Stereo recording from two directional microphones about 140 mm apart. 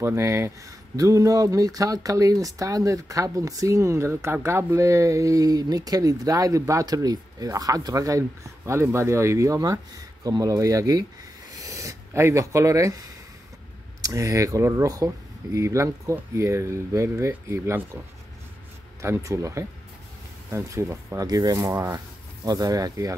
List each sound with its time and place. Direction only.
0.0 s speech: 20° right (ahead or behind)
14.0 s speech: 25° right (ahead or behind)
18.9 s speech: 20° right (ahead or behind)